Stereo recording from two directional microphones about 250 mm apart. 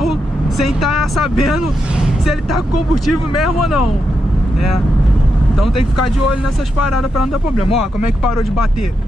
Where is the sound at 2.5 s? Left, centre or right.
Left.